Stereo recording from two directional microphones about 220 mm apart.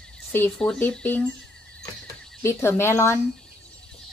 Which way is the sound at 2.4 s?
10° left (ahead or behind).